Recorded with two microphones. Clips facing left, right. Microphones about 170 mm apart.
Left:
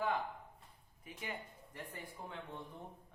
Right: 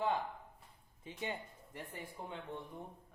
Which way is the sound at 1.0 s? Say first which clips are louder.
Right 4 dB; 25° right (ahead or behind).